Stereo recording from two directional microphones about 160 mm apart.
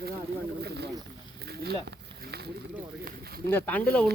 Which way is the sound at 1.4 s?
85° right.